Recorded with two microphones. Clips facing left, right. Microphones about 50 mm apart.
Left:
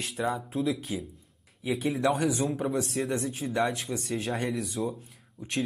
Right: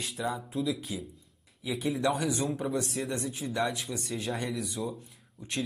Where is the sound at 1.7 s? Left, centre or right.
Centre.